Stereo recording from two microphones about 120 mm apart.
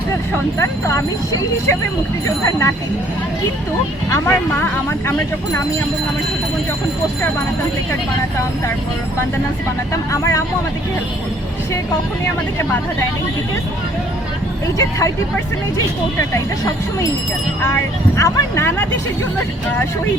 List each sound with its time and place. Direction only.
0.6 s speech: 25° left (ahead or behind)
4.1 s speech: 20° left (ahead or behind)
10.1 s speech: 25° left (ahead or behind)
14.8 s speech: 25° left (ahead or behind)
18.2 s speech: 20° left (ahead or behind)